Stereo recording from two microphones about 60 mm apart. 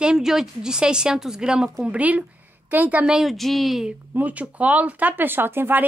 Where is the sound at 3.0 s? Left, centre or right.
Centre.